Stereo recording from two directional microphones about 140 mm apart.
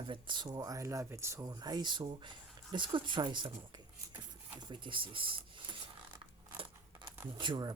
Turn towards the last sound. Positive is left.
turn(degrees=-35)  # may be behind; listen again after turning